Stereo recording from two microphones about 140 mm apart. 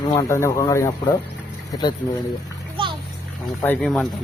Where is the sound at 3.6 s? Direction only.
15° left (ahead or behind).